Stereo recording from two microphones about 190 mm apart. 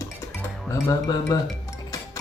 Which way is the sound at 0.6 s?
15° left (ahead or behind).